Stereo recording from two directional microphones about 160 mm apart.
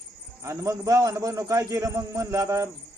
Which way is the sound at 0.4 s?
15° right (ahead or behind).